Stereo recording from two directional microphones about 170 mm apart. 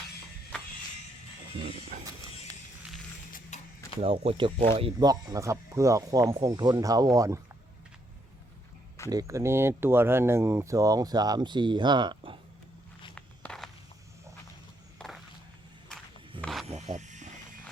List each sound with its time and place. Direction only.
3.5 s mechanisms: 45° left (ahead or behind)
4.0 s speech: 35° right (ahead or behind)
9.0 s speech: 20° right (ahead or behind)
13.1 s walk: 5° left (ahead or behind)
14.9 s a sound: centre (ahead or behind)
16.4 s wild animals: centre (ahead or behind)
16.6 s wild animals: 40° right (ahead or behind)